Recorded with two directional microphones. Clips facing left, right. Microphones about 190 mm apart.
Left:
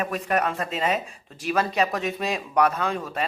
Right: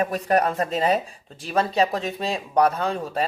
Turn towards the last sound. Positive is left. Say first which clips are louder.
# right 2 dB
turn(degrees=-35)  # may be behind; listen again after turning